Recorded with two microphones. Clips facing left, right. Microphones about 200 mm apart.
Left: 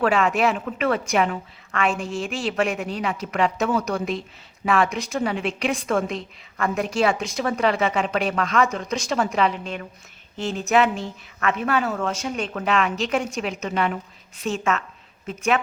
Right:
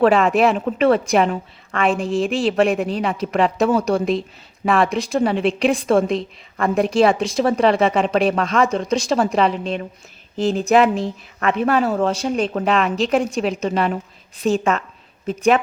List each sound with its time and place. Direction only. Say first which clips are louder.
0.0 s a woman's voice: right 5 dB; 35° right (ahead or behind)